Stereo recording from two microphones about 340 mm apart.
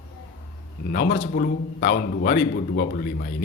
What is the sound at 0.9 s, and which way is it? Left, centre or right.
A man's voice, left.